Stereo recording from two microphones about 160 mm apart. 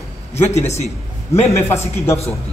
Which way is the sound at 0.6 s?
45° left (ahead or behind).